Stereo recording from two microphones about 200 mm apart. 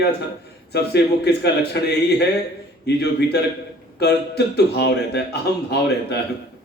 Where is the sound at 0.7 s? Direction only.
55° left (ahead or behind).